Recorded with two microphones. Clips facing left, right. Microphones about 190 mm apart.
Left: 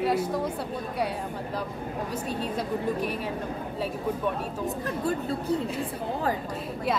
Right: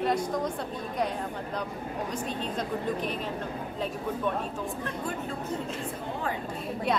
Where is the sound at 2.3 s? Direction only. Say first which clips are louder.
Left 2 dB; 10° left (ahead or behind).